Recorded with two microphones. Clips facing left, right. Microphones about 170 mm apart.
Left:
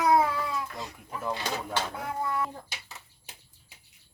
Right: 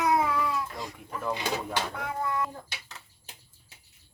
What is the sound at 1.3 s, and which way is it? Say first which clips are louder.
Speech: right 1 dB; 10° right (ahead or behind).